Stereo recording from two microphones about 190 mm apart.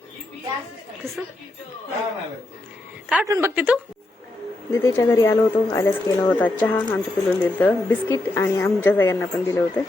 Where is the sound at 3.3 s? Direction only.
15° right (ahead or behind).